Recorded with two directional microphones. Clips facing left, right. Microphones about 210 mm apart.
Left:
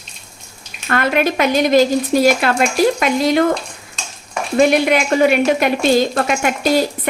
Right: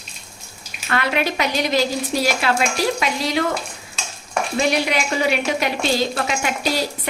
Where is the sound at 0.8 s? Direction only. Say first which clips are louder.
Left 5 dB; 50° left (ahead or behind).